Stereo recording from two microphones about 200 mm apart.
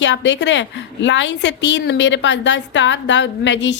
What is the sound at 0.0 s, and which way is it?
A woman's voice, 65° left (ahead or behind).